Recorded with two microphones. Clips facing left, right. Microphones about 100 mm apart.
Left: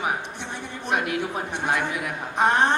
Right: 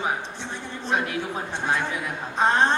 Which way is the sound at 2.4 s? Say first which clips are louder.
Even; 15° left (ahead or behind).